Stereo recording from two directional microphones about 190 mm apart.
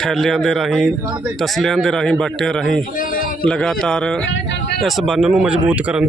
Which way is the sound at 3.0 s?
45° left (ahead or behind).